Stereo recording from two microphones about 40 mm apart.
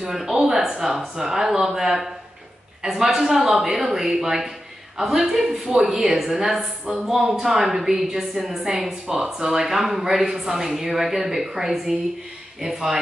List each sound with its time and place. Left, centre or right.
0.0 s a woman's voice: centre
9.0 s a woman's voice: centre